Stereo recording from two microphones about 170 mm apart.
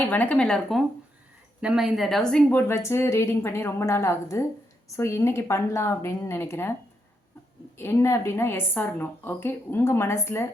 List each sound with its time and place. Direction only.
0.0 s a woman's voice: 10° left (ahead or behind)
7.8 s a woman's voice: 15° left (ahead or behind)